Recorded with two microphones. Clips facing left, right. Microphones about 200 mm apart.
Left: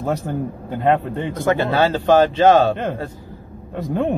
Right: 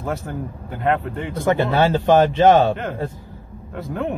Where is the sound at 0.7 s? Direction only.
15° left (ahead or behind).